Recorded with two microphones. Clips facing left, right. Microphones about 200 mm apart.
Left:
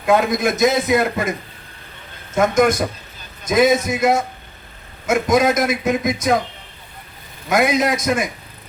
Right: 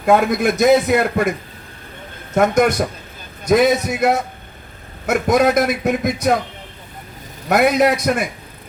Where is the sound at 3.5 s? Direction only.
65° right (ahead or behind).